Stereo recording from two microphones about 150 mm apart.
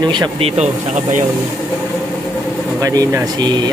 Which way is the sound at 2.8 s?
25° right (ahead or behind).